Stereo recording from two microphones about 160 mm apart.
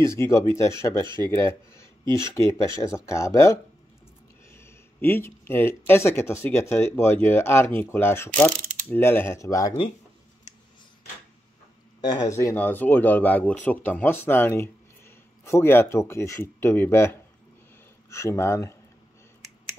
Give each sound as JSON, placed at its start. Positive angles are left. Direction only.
{"t": 0.0, "sound": "speech", "side_deg": 15}
{"t": 12.0, "sound": "speech", "side_deg": 25}